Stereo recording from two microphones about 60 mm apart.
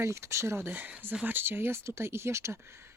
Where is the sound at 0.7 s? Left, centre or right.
Right.